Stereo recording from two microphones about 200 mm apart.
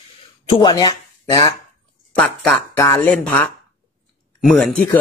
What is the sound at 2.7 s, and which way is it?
Speech, 15° left (ahead or behind).